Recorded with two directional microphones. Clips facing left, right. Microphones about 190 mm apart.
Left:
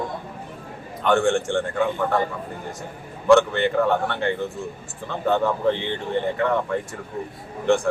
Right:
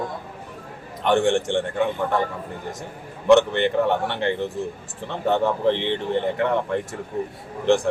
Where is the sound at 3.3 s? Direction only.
20° right (ahead or behind).